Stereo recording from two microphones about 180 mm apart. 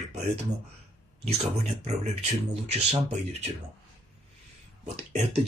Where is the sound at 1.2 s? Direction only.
35° right (ahead or behind).